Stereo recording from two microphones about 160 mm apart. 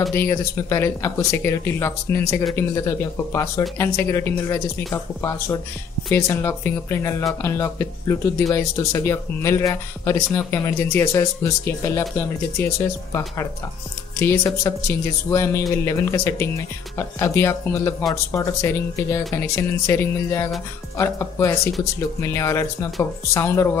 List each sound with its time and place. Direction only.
0.1 s speech: 15° left (ahead or behind)
14.2 s speech: 20° left (ahead or behind)